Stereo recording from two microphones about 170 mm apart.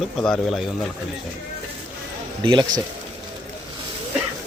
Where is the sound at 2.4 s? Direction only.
25° right (ahead or behind).